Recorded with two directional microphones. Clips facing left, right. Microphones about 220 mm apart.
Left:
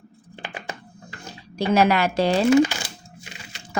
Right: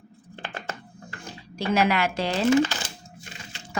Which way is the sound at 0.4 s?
15° left (ahead or behind).